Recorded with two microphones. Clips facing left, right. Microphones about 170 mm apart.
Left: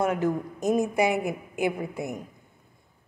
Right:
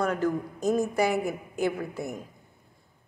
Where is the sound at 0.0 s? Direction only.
20° left (ahead or behind).